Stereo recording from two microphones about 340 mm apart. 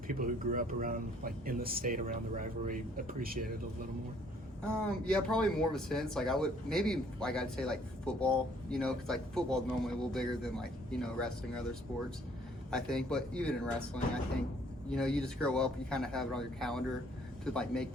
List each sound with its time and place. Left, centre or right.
0.1 s speech: right
4.6 s speech: centre